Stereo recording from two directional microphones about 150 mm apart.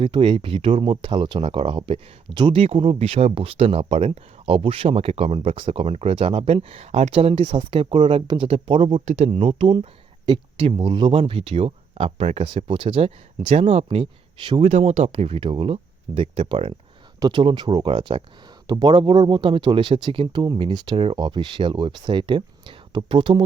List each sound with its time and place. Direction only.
0.0 s speech: 35° right (ahead or behind)
14.7 s speech: 50° right (ahead or behind)
17.2 s speech: 30° right (ahead or behind)